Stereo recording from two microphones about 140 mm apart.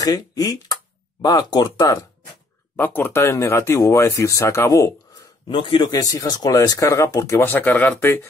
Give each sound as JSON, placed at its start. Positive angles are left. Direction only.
{"t": 0.0, "sound": "speech", "side_deg": 25}
{"t": 2.7, "sound": "speech", "side_deg": 15}
{"t": 5.5, "sound": "speech", "side_deg": 35}